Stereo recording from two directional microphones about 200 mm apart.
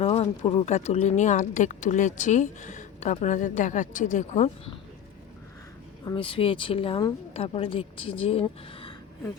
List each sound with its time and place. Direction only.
0.0 s speech: 30° left (ahead or behind)
6.1 s speech: 25° left (ahead or behind)